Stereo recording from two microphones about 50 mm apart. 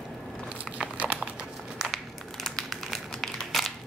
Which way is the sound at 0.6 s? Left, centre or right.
Right.